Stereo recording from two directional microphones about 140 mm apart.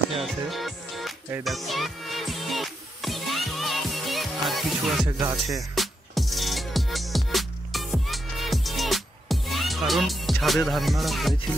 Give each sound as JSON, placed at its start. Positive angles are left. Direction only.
{"t": 0.2, "sound": "music", "side_deg": 0}
{"t": 5.2, "sound": "music", "side_deg": -25}
{"t": 5.8, "sound": "music", "side_deg": 0}